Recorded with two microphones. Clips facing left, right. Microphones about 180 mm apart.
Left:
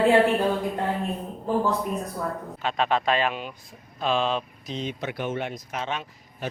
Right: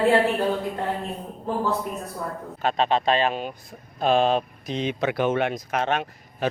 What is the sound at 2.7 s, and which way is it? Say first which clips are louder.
Speech: right 1 dB; 30° right (ahead or behind).